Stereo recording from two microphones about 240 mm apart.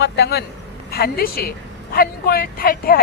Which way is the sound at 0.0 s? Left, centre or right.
Left.